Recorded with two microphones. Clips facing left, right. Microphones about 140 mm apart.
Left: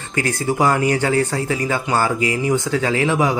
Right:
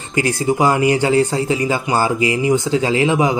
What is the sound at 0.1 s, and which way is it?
Speech, 15° right (ahead or behind).